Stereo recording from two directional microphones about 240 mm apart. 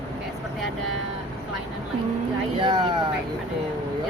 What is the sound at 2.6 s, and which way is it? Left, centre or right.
Speech, centre.